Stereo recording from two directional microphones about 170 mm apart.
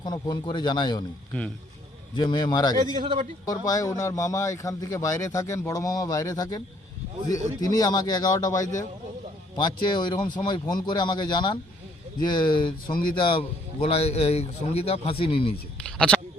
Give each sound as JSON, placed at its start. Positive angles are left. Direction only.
{"t": 0.0, "sound": "speech", "side_deg": 25}
{"t": 1.3, "sound": "speech", "side_deg": 10}
{"t": 2.1, "sound": "speech", "side_deg": 25}
{"t": 2.8, "sound": "a man's voice", "side_deg": -25}
{"t": 3.4, "sound": "a man's voice", "side_deg": 20}
{"t": 15.8, "sound": "a sound", "side_deg": 5}